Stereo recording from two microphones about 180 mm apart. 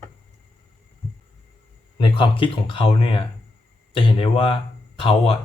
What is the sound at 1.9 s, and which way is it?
Speech, 30° left (ahead or behind).